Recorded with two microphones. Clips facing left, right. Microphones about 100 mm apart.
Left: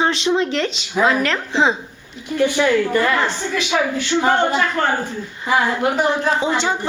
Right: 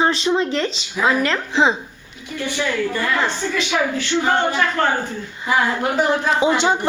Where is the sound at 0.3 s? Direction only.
Centre (ahead or behind).